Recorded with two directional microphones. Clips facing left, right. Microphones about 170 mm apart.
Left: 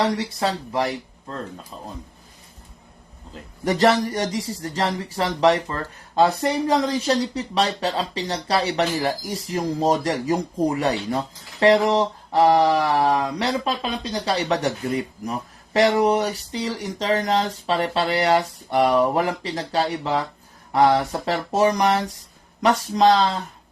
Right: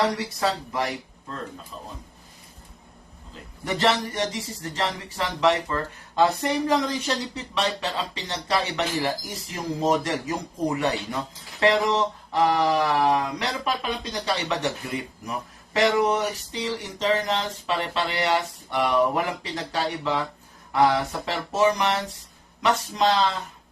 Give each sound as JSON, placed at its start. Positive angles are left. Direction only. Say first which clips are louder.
{"t": 0.0, "sound": "speech", "louder": "left 2 dB", "side_deg": 25}
{"t": 3.6, "sound": "speech", "louder": "left 5 dB", "side_deg": 40}